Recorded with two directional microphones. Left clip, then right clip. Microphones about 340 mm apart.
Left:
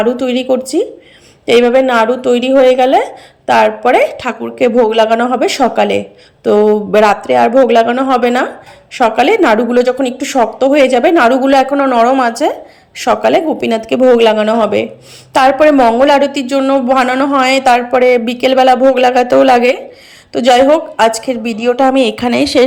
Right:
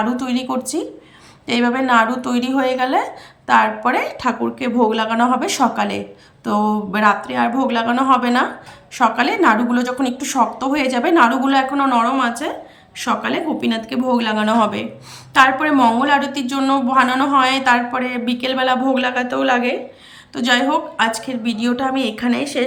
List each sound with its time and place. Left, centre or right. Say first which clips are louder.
0.0 s speech: left 8 dB; centre